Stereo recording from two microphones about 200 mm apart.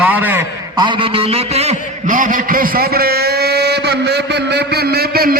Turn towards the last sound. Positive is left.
turn(degrees=-50)  # may be behind; listen again after turning